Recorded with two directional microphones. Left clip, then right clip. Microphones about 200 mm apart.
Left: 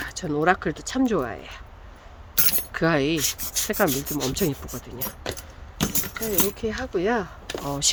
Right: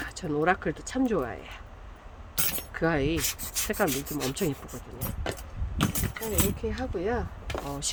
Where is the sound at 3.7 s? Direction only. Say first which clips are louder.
Left 5 dB; 20° left (ahead or behind).